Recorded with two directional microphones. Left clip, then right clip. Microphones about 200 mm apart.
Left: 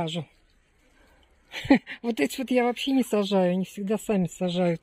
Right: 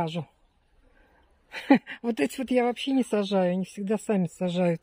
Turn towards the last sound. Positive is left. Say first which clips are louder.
# even
turn(degrees=-15)  # may be behind; listen again after turning